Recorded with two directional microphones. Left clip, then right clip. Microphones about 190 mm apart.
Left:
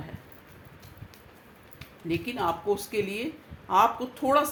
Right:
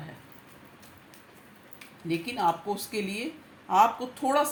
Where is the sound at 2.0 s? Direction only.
30° left (ahead or behind).